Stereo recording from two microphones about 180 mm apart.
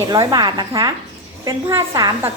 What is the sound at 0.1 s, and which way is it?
A woman's voice, 25° right (ahead or behind).